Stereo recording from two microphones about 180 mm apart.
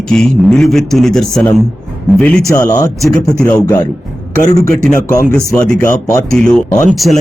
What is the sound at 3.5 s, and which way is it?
Speech, 5° left (ahead or behind).